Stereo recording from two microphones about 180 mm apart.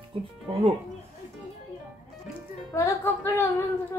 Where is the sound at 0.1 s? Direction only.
30° right (ahead or behind).